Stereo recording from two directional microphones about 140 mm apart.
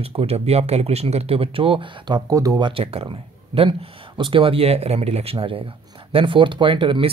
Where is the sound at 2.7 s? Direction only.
45° right (ahead or behind).